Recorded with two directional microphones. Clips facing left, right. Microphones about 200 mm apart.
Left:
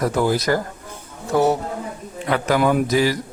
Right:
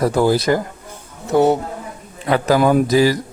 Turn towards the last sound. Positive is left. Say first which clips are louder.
# right 4 dB
turn(degrees=-35)  # may be behind; listen again after turning